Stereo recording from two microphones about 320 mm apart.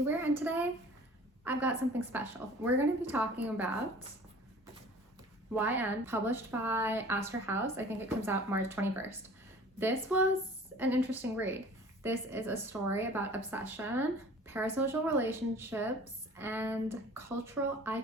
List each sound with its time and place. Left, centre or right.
0.1 s a woman's voice: centre
5.5 s a woman's voice: centre
10.8 s a woman's voice: centre